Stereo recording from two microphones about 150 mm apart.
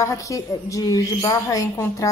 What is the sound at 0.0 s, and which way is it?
A woman's voice, 20° left (ahead or behind).